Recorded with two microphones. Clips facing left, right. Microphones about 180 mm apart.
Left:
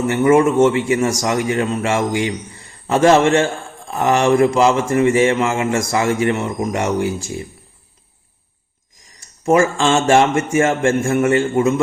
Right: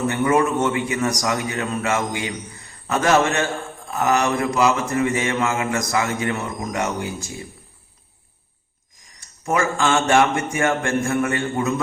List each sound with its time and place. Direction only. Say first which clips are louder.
0.1 s speech: left 8 dB; 25° left (ahead or behind)
9.5 s speech: left 6 dB; 30° left (ahead or behind)